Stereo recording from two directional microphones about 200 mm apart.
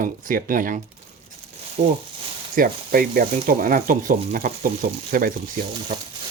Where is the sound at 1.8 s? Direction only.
30° right (ahead or behind).